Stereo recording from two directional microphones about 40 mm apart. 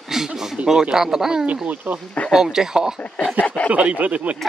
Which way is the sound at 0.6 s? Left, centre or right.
Right.